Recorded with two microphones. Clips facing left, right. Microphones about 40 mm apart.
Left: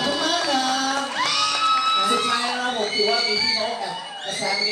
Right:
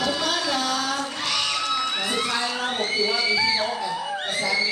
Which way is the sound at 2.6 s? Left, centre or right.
Right.